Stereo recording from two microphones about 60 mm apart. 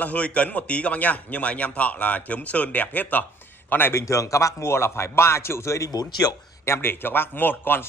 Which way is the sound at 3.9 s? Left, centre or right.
Left.